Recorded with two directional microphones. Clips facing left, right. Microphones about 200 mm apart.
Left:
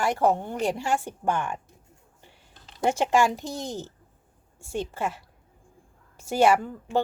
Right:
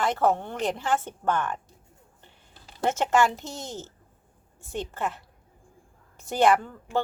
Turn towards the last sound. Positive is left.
turn(degrees=10)  # may be behind; listen again after turning